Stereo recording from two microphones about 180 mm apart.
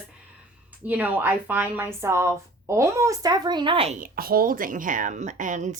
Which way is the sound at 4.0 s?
55° right (ahead or behind).